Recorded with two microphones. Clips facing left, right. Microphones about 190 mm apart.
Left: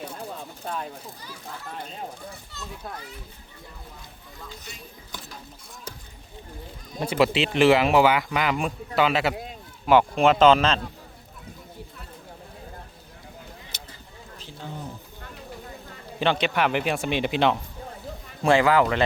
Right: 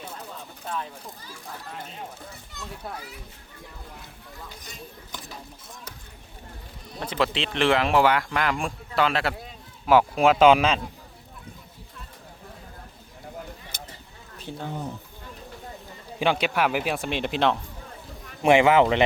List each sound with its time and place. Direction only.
2.5 s speech: 10° right (ahead or behind)
7.0 s speech: 10° left (ahead or behind); by 10.8 s 10° right (ahead or behind)
13.7 s a sound: 50° right (ahead or behind)
16.2 s speech: 10° right (ahead or behind)
18.4 s speech: 20° right (ahead or behind)